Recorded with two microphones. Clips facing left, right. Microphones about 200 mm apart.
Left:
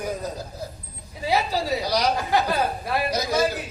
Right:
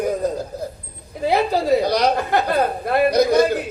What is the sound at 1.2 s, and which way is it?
A woman's voice, 55° right (ahead or behind).